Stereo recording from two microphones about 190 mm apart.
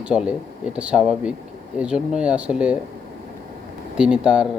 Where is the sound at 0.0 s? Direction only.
5° right (ahead or behind).